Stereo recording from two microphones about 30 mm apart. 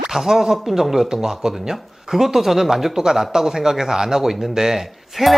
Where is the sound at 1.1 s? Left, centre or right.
Right.